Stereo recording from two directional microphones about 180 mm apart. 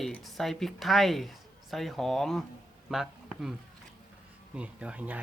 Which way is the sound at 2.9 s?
5° right (ahead or behind).